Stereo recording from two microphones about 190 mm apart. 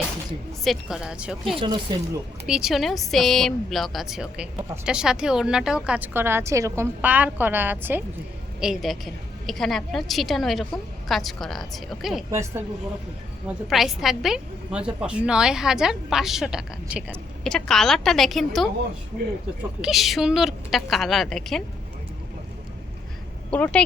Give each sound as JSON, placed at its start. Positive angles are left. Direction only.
{"t": 0.6, "sound": "a woman's voice", "side_deg": 0}
{"t": 1.5, "sound": "speech", "side_deg": -25}
{"t": 2.5, "sound": "a woman's voice", "side_deg": 0}
{"t": 12.3, "sound": "speech", "side_deg": -15}
{"t": 13.7, "sound": "a woman's voice", "side_deg": 0}
{"t": 19.8, "sound": "a woman's voice", "side_deg": 0}
{"t": 23.5, "sound": "speech", "side_deg": 10}